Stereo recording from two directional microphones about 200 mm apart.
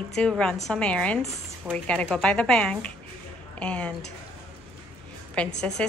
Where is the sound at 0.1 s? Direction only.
5° left (ahead or behind).